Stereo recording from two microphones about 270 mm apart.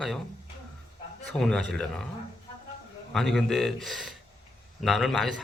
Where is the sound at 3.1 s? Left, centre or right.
Centre.